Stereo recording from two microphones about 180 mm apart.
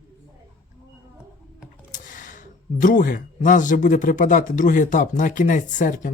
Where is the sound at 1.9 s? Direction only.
45° left (ahead or behind).